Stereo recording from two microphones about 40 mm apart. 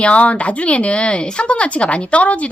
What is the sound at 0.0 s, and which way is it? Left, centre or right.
Speech, left.